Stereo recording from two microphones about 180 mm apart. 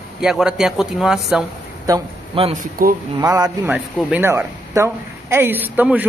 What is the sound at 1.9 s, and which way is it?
Speech, 20° right (ahead or behind).